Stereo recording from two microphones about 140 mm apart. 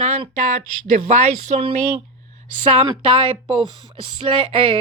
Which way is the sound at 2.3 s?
50° right (ahead or behind).